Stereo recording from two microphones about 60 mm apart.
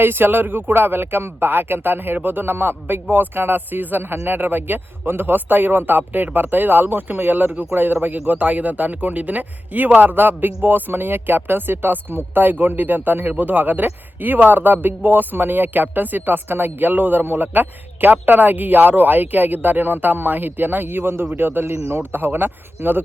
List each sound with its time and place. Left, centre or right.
0.0 s speech: right
8.2 s speech: right
21.7 s speech: right